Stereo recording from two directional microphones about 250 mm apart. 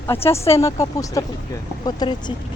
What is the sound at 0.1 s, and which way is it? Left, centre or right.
Speech, centre.